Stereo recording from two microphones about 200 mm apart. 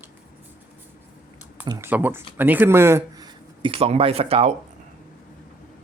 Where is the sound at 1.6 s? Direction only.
20° right (ahead or behind).